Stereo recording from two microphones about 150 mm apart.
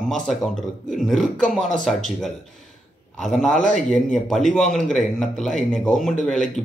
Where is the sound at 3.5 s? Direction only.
55° left (ahead or behind).